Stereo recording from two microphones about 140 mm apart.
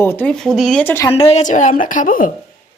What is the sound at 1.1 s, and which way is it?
A woman's voice, 45° left (ahead or behind).